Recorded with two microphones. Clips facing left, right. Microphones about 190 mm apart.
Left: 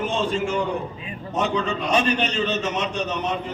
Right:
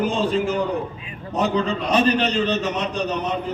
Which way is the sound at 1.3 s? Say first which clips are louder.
Right 2 dB; 35° right (ahead or behind).